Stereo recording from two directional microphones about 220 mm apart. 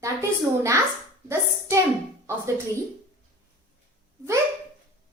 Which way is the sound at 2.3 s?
10° right (ahead or behind).